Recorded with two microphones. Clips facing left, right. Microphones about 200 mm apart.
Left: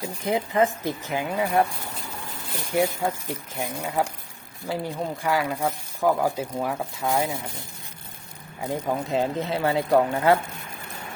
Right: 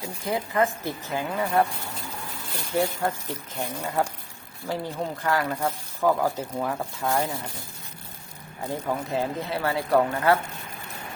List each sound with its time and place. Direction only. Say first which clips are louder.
0.3 s speech: left 2 dB; 20° left (ahead or behind)
2.7 s speech: left 2 dB; 10° left (ahead or behind)
8.6 s speech: left 2 dB; 20° left (ahead or behind)